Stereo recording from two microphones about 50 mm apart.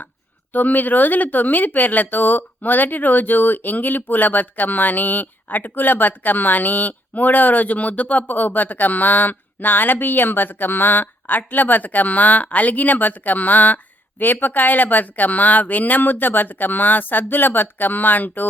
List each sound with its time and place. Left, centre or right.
0.5 s speech: left